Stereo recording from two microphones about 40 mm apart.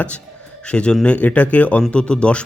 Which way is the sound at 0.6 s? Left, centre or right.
Left.